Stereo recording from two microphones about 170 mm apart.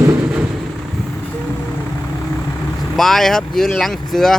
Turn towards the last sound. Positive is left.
turn(degrees=0)  # may be behind; listen again after turning